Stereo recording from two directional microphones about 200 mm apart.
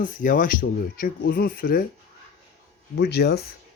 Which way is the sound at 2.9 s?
55° left (ahead or behind).